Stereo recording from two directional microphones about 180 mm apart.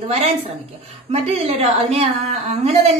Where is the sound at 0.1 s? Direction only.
35° right (ahead or behind).